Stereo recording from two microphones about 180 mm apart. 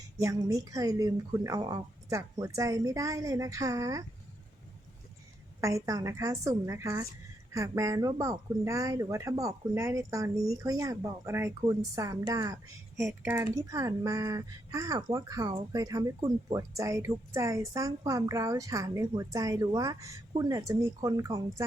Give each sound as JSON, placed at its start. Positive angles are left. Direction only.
{"t": 0.2, "sound": "speech", "side_deg": -20}
{"t": 5.5, "sound": "speech", "side_deg": -15}